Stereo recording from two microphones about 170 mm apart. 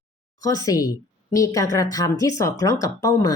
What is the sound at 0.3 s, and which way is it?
Speech, 20° left (ahead or behind).